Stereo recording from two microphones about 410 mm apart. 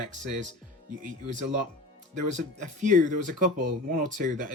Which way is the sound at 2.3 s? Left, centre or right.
Centre.